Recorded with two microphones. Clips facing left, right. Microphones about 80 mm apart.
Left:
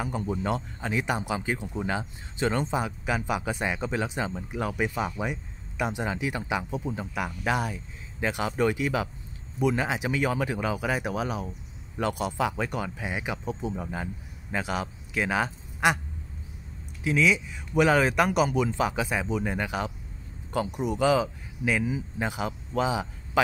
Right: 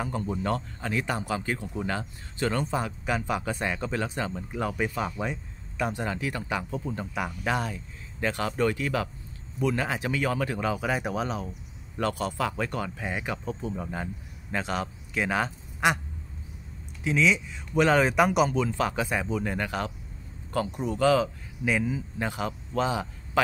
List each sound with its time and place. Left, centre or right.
0.0 s speech: centre
7.2 s speech: centre
13.8 s speech: centre
17.0 s speech: centre
18.5 s speech: centre
21.6 s a man's voice: centre